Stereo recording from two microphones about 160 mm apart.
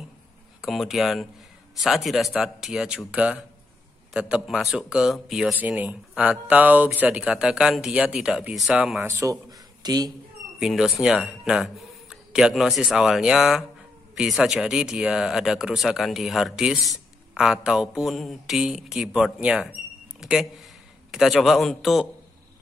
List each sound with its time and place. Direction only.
0.6 s speech: centre (ahead or behind)
9.1 s a man's voice: 20° right (ahead or behind)
10.6 s speech: centre (ahead or behind)